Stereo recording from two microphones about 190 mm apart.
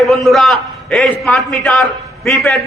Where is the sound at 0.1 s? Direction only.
Centre (ahead or behind).